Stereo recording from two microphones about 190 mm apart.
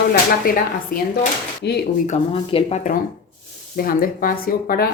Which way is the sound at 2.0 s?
35° left (ahead or behind).